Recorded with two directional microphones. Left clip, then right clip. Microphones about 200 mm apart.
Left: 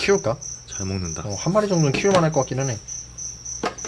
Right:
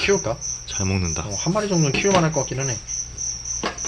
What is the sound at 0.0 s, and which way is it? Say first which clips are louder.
Speech: left 1 dB; 60° left (ahead or behind).